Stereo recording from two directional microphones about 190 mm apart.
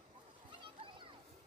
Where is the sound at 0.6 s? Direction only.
25° right (ahead or behind).